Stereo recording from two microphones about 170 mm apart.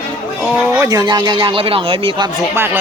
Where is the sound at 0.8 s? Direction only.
20° right (ahead or behind).